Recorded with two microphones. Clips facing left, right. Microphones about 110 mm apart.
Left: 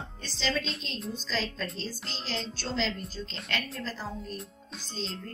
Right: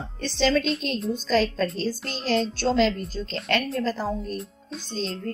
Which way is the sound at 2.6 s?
80° right.